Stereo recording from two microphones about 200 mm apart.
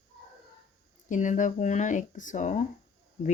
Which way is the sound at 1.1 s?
40° left (ahead or behind).